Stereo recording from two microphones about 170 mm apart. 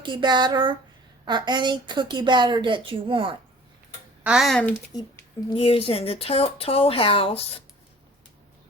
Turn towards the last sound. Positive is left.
turn(degrees=35)  # may be behind; listen again after turning